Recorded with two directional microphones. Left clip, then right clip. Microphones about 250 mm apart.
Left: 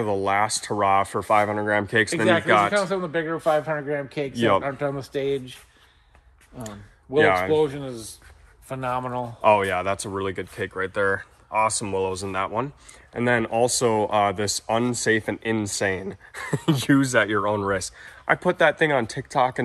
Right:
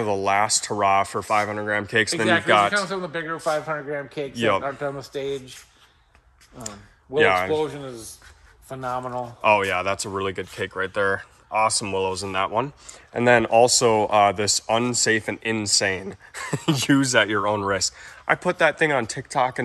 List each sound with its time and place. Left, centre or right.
0.0 s speech: centre
2.7 s a man's voice: left
7.2 s speech: centre
7.6 s a man's voice: left
8.6 s speech: left
9.4 s speech: centre